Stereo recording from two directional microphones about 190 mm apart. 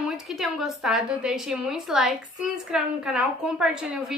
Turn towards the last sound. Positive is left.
turn(degrees=-5)  # may be behind; listen again after turning